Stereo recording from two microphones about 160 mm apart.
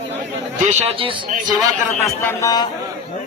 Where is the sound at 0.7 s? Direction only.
35° right (ahead or behind).